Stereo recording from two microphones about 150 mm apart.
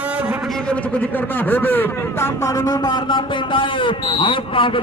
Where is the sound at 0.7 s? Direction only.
10° left (ahead or behind).